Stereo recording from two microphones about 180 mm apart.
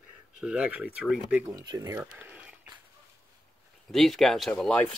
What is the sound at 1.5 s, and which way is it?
Speech, 20° right (ahead or behind).